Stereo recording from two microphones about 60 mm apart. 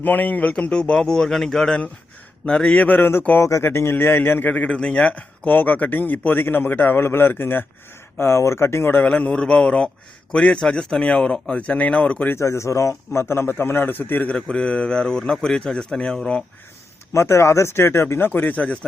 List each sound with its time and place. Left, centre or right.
0.0 s a man's voice: left; by 1.8 s centre
2.5 s speech: centre
4.5 s speech: centre; by 7.6 s left
8.2 s a man's voice: left
9.0 s a man's voice: left
12.4 s a man's voice: left
14.3 s a man's voice: centre
17.2 s a man's voice: left
18.3 s speech: left